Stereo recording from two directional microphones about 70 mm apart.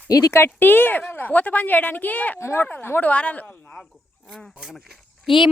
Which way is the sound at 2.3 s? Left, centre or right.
Left.